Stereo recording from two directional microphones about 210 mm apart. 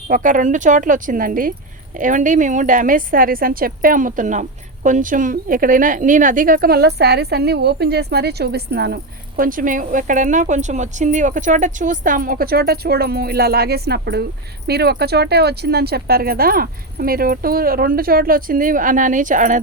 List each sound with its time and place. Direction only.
0.1 s a woman's voice: 40° right (ahead or behind)